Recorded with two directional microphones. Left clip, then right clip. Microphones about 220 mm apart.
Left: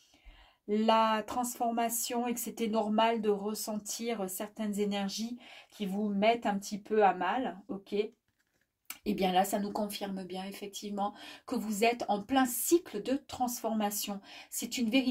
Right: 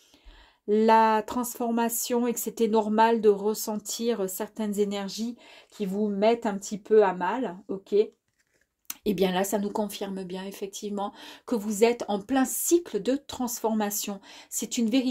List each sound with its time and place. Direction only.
0.7 s speech: 45° right (ahead or behind)
9.0 s speech: 45° right (ahead or behind)